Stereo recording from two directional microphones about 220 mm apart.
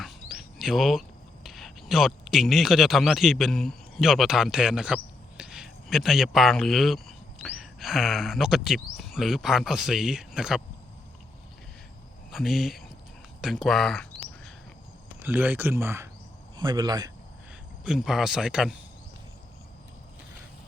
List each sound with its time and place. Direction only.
0.0 s bird: centre (ahead or behind)
1.5 s speech: centre (ahead or behind)
12.3 s speech: centre (ahead or behind)
13.4 s a sound: centre (ahead or behind)
15.2 s speech: 10° right (ahead or behind)
17.8 s speech: 5° right (ahead or behind)